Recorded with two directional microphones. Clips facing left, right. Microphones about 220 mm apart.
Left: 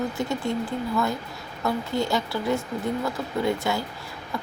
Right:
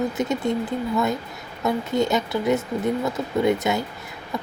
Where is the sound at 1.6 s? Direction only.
20° right (ahead or behind).